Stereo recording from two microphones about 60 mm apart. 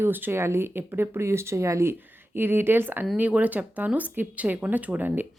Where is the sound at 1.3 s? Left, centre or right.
Right.